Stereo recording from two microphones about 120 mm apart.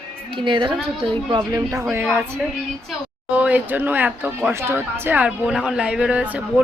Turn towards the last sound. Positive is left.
turn(degrees=-10)  # may be behind; listen again after turning